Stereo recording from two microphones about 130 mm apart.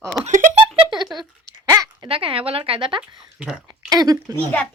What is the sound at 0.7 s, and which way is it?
Speech, 35° right (ahead or behind).